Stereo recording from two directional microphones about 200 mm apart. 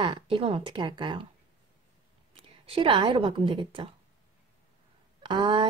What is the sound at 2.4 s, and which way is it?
A woman's voice, 25° right (ahead or behind).